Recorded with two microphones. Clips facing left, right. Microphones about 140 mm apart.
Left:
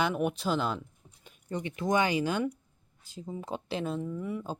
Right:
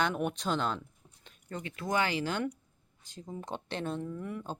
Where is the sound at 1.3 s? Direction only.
15° left (ahead or behind).